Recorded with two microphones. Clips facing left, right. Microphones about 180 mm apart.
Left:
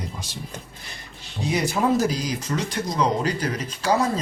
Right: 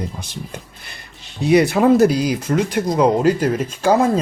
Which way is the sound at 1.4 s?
65° right (ahead or behind).